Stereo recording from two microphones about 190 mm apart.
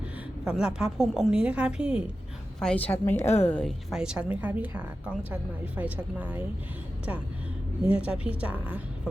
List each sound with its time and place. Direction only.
0.4 s a woman's voice: 5° right (ahead or behind)
2.6 s a woman's voice: 5° left (ahead or behind)
7.9 s a woman's voice: 5° right (ahead or behind)